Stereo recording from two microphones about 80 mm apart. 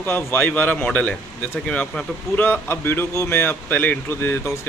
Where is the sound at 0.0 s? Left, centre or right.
Left.